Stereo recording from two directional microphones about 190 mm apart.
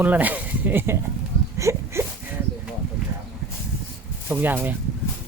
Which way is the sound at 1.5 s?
15° right (ahead or behind).